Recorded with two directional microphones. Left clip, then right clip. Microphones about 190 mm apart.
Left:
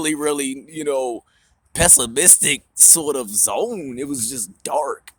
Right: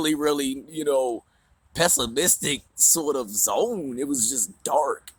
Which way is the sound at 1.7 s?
35° left (ahead or behind).